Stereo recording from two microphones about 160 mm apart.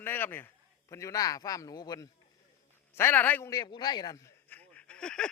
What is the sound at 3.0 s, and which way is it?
Speech, 10° left (ahead or behind).